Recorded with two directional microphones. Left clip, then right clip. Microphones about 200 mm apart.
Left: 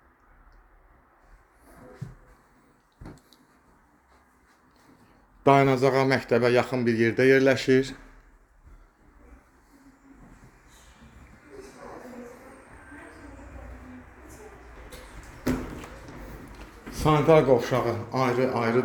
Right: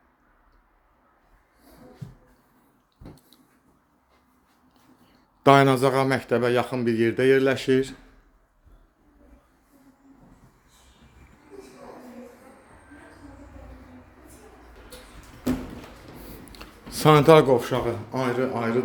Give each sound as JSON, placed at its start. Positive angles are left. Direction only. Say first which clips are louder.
{"t": 5.4, "sound": "speech", "louder": "right 3 dB", "side_deg": -30}
{"t": 16.6, "sound": "a sound", "louder": "right 5 dB", "side_deg": -40}
{"t": 17.4, "sound": "speech", "louder": "even", "side_deg": -15}